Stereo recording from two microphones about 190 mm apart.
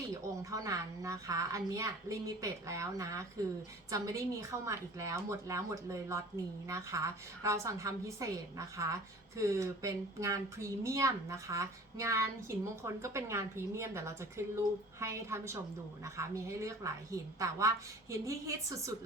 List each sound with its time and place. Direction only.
0.1 s a woman's voice: 15° right (ahead or behind)